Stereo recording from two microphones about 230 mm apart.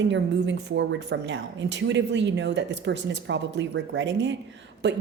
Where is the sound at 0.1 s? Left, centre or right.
Right.